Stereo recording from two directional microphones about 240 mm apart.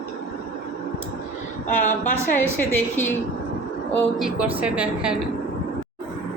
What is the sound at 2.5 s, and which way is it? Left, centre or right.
Speech, centre.